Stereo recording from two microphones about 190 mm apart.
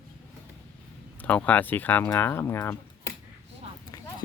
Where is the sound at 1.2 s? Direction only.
10° left (ahead or behind).